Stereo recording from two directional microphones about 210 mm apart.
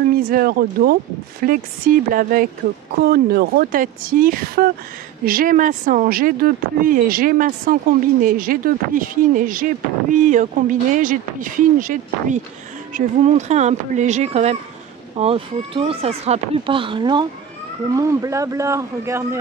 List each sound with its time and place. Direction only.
0.3 s speech: 45° right (ahead or behind); by 19.2 s 15° right (ahead or behind)